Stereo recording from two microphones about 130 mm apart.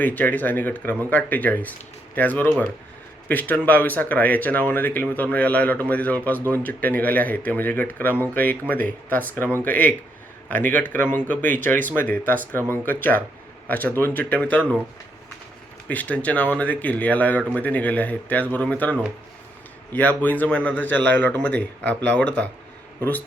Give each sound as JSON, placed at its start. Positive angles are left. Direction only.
{"t": 0.0, "sound": "speech", "side_deg": 15}
{"t": 15.9, "sound": "a man's voice", "side_deg": 10}